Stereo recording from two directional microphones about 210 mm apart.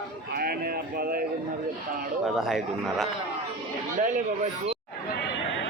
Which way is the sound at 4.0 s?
35° right (ahead or behind).